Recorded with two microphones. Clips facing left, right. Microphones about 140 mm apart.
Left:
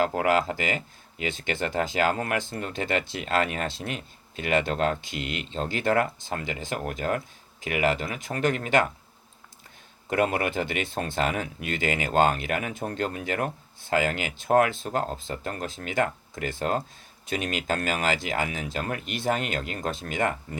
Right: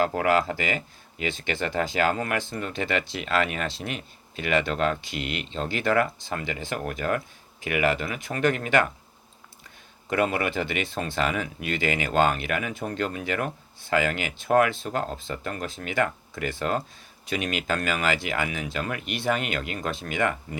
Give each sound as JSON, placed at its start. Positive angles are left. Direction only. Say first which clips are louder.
{"t": 0.0, "sound": "speech", "louder": "right 1 dB", "side_deg": 45}
{"t": 8.4, "sound": "speech", "louder": "right 2 dB", "side_deg": -50}
{"t": 10.1, "sound": "speech", "louder": "even", "side_deg": 50}